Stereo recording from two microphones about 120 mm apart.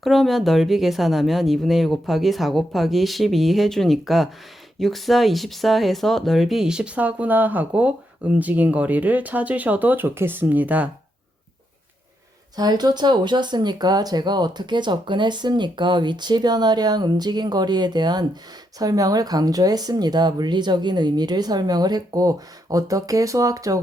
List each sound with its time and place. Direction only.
0.0 s speech: centre (ahead or behind)
12.5 s speech: 35° right (ahead or behind)